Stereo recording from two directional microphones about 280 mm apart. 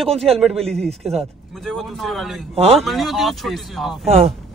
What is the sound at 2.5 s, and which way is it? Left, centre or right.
Speech, right.